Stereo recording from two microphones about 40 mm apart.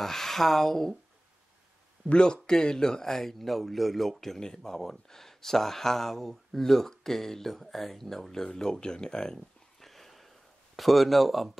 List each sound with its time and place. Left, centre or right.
0.0 s speech: centre
2.1 s speech: centre
9.8 s a sound: centre
10.8 s speech: centre